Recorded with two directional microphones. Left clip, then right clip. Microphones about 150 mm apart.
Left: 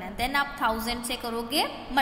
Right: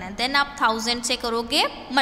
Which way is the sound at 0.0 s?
20° right (ahead or behind).